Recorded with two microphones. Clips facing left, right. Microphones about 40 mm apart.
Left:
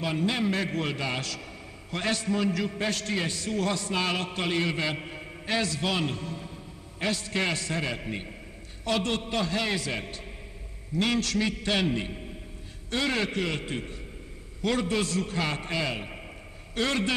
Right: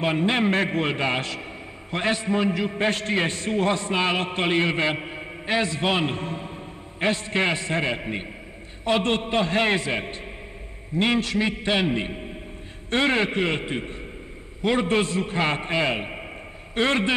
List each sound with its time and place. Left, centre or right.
0.0 s a man's voice: right